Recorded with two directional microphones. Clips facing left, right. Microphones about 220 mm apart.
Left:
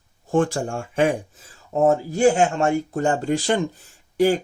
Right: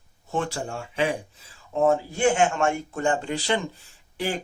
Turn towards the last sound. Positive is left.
turn(degrees=45)  # may be behind; listen again after turning